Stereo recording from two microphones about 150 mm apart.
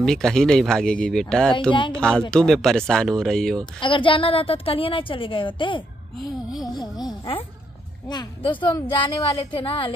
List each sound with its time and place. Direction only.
0.0 s speech: 5° left (ahead or behind)
3.8 s a woman's voice: 35° left (ahead or behind)
6.1 s speech: centre (ahead or behind)
6.7 s a sound: 30° left (ahead or behind)
8.1 s a woman's voice: 30° left (ahead or behind)